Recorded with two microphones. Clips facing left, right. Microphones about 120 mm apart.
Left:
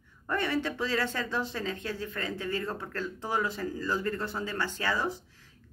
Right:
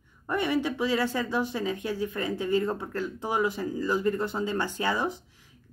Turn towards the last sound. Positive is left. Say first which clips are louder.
# right 2 dB
turn(degrees=-15)  # may be behind; listen again after turning